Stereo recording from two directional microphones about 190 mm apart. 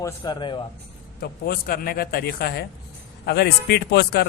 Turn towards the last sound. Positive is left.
turn(degrees=60)  # may be behind; listen again after turning